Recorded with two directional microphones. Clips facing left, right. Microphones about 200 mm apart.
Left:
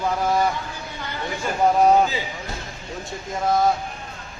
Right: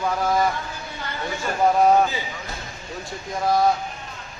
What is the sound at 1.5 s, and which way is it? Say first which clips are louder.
Speech: left 1 dB; 5° left (ahead or behind).